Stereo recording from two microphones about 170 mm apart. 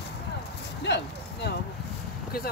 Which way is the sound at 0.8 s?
85° left.